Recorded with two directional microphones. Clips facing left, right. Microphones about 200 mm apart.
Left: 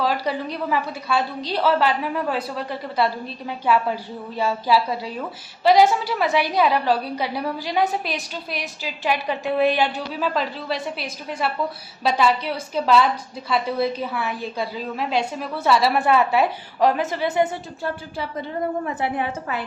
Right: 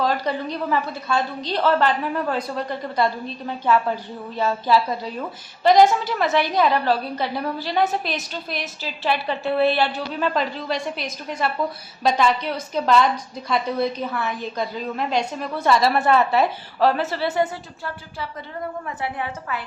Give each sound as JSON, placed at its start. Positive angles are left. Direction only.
{"t": 0.0, "sound": "a woman's voice", "side_deg": 10}
{"t": 10.2, "sound": "a woman's voice", "side_deg": 5}
{"t": 18.9, "sound": "a woman's voice", "side_deg": 25}